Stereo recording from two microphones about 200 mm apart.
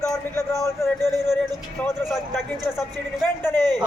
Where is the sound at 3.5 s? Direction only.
20° right (ahead or behind).